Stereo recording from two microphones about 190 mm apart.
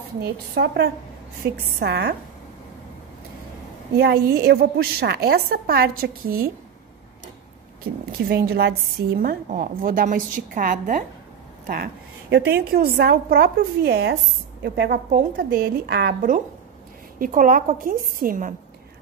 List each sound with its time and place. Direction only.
0.2 s a woman's voice: 60° right (ahead or behind)
4.0 s a woman's voice: 55° right (ahead or behind)
8.3 s a woman's voice: 55° right (ahead or behind)